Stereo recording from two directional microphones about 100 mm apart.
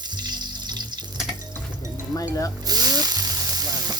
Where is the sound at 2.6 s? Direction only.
40° right (ahead or behind).